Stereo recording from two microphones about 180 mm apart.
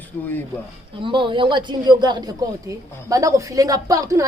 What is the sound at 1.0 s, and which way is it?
A woman's voice, 25° right (ahead or behind).